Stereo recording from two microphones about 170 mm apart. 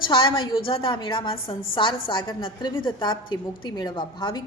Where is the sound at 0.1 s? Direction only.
30° left (ahead or behind).